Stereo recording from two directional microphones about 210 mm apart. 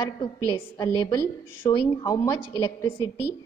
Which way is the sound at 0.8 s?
15° left (ahead or behind).